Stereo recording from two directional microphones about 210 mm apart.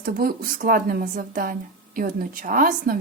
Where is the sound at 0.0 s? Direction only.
45° right (ahead or behind).